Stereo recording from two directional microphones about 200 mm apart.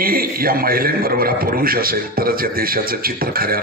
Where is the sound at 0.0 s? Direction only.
45° right (ahead or behind).